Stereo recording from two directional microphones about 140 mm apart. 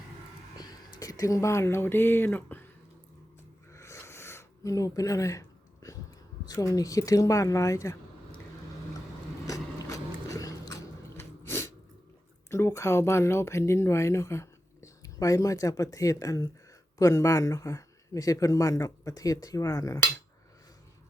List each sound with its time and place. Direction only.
0.9 s speech: 25° left (ahead or behind)
3.7 s a sound: 20° left (ahead or behind)
6.5 s speech: 25° left (ahead or behind)
9.5 s biting: 25° left (ahead or behind)
11.2 s sneeze: 20° left (ahead or behind)
12.5 s speech: 20° left (ahead or behind)